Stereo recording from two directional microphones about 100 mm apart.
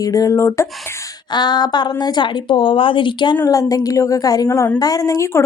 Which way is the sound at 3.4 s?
35° left (ahead or behind).